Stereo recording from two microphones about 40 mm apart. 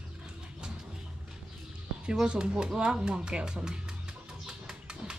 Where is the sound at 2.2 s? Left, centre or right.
Right.